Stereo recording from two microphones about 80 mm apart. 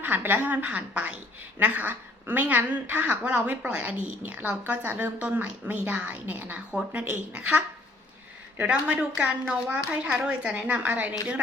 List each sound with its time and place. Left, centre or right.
0.0 s a woman's voice: right